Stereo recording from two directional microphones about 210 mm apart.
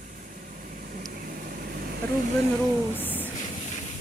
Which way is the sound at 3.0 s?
10° left (ahead or behind).